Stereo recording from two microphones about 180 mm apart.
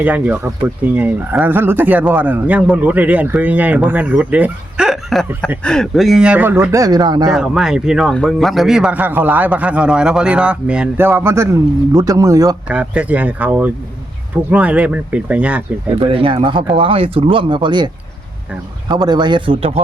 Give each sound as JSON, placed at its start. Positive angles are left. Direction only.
{"t": 0.0, "sound": "a man's voice", "side_deg": -10}
{"t": 7.3, "sound": "a man's voice", "side_deg": -5}
{"t": 12.6, "sound": "a man's voice", "side_deg": -5}
{"t": 16.0, "sound": "speech", "side_deg": -30}